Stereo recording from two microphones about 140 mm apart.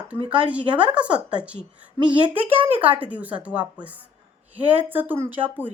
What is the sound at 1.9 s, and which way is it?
Speech, 35° right (ahead or behind).